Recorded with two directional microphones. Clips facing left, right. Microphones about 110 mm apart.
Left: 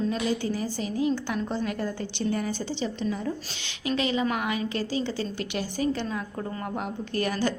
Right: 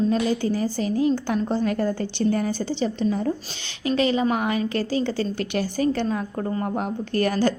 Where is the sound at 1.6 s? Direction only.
45° right (ahead or behind).